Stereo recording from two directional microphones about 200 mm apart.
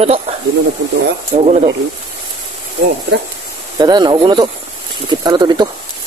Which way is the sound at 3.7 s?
20° right (ahead or behind).